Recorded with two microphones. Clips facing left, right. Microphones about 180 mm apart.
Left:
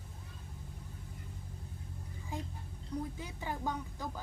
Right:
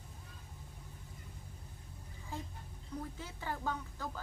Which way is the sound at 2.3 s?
15° left (ahead or behind).